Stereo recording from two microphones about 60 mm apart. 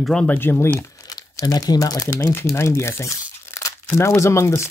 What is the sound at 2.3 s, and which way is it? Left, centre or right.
Speech, left.